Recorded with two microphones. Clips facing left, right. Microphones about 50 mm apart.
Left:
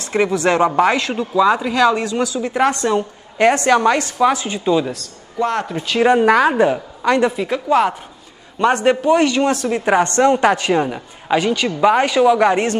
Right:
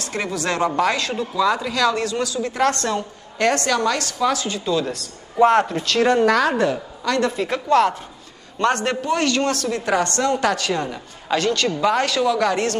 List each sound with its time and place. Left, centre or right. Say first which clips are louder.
0.0 s speech: left 8 dB; left
5.4 s speech: right 4 dB; centre
5.9 s a woman's voice: left 6 dB; centre